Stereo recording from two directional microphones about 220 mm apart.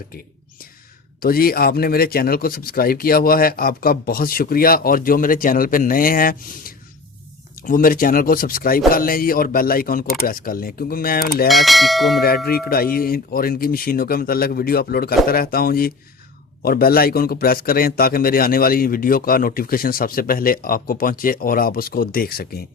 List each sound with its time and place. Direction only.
1.2 s a man's voice: 40° left (ahead or behind)
11.4 s bell: centre (ahead or behind)
12.5 s a man's voice: 45° left (ahead or behind)